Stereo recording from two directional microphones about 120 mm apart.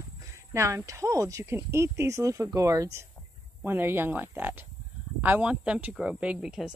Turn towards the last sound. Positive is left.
turn(degrees=-5)  # may be behind; listen again after turning